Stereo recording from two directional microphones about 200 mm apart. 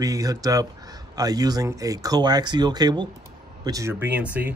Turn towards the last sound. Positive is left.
turn(degrees=-5)  # may be behind; listen again after turning